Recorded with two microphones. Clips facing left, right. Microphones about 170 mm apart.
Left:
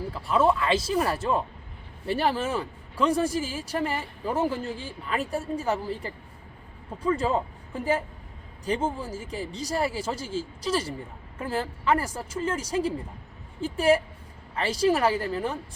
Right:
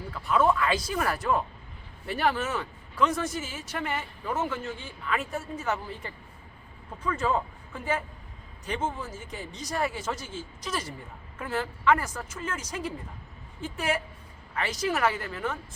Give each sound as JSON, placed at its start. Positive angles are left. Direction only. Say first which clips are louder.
{"t": 0.1, "sound": "speech", "louder": "left 1 dB", "side_deg": 30}